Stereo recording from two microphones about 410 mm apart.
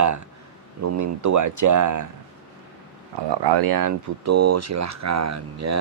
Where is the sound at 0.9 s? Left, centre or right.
Right.